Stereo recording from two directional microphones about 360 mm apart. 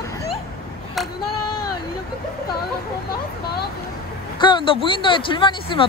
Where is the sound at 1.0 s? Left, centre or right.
Centre.